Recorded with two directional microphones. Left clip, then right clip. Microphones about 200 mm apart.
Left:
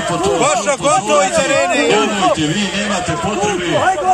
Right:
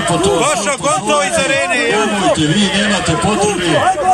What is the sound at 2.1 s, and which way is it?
Speech, 10° right (ahead or behind).